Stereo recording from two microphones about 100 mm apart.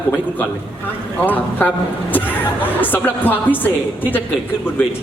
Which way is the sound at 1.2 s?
15° left (ahead or behind).